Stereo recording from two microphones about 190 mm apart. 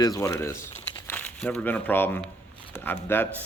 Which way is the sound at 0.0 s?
20° left (ahead or behind).